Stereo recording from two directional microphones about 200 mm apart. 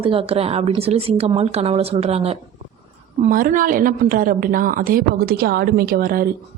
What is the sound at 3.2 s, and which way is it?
A woman's voice, 40° right (ahead or behind).